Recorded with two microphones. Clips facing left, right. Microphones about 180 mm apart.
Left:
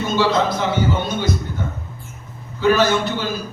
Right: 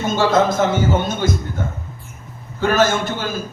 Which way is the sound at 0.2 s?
45° right (ahead or behind).